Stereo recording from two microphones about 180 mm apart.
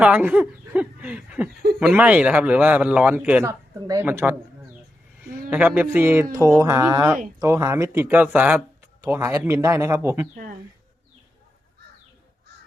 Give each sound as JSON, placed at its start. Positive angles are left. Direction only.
{"t": 0.0, "sound": "speech", "side_deg": -10}
{"t": 3.4, "sound": "a woman's voice", "side_deg": -20}
{"t": 5.5, "sound": "speech", "side_deg": -10}